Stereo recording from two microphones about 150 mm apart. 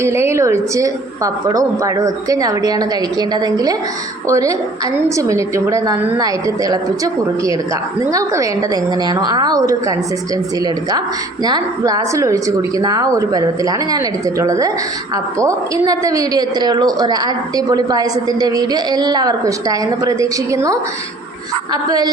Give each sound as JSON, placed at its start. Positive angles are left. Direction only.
{"t": 0.0, "sound": "a woman's voice", "side_deg": -20}